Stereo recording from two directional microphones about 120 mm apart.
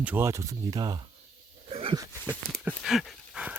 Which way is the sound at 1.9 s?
25° right (ahead or behind).